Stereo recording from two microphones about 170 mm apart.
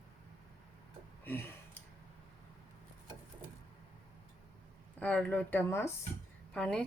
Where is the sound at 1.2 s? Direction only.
10° left (ahead or behind).